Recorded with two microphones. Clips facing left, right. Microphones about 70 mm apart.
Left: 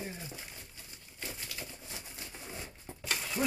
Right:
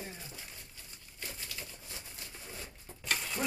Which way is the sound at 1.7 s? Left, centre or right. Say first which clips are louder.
Left 2 dB; left.